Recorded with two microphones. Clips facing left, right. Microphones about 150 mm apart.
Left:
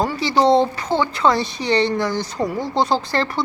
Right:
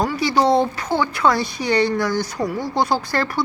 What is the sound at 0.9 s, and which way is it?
Speech, 10° right (ahead or behind).